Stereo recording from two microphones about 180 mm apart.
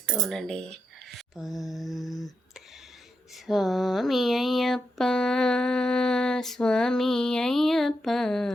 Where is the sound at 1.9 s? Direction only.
20° left (ahead or behind).